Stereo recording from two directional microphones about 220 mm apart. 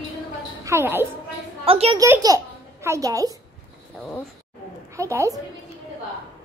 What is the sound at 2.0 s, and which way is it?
A child's voice, 15° right (ahead or behind).